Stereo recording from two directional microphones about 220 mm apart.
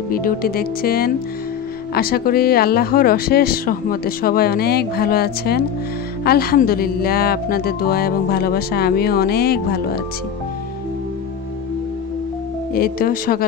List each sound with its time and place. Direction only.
0.1 s speech: 40° left (ahead or behind)
12.7 s speech: 40° left (ahead or behind)